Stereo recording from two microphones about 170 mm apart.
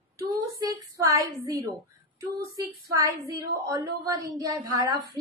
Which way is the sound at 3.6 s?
20° right (ahead or behind).